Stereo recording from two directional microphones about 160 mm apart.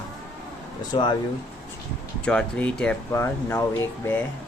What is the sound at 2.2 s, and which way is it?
Speech, 5° left (ahead or behind).